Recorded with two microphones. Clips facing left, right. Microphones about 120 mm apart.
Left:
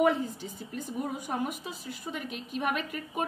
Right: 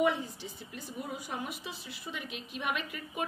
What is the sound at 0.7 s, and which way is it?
A woman's voice, 45° left (ahead or behind).